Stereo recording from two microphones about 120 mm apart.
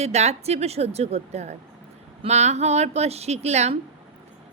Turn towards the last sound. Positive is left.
turn(degrees=-65)  # may be behind; listen again after turning